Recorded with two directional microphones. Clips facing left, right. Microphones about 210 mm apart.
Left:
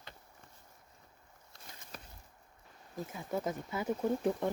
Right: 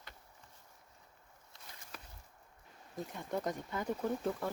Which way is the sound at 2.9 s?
5° left (ahead or behind).